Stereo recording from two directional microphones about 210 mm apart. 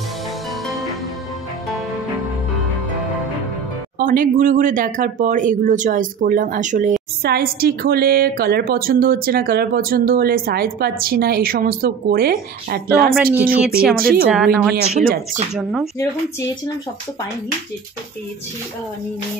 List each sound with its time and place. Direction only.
4.0 s speech: 40° right (ahead or behind)
7.2 s a woman's voice: 45° right (ahead or behind)
14.3 s speech: 5° right (ahead or behind)
14.7 s a woman's voice: 45° right (ahead or behind)
15.5 s speech: centre (ahead or behind)